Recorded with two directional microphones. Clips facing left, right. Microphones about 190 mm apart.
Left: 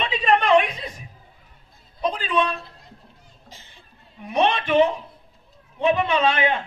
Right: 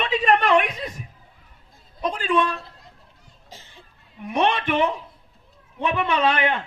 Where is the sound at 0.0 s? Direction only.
20° left (ahead or behind).